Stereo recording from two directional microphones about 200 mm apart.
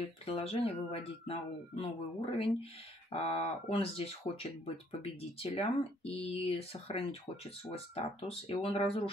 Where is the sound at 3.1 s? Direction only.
30° left (ahead or behind).